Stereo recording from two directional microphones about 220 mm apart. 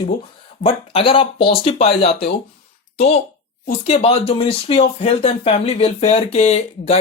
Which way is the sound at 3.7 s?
30° left (ahead or behind).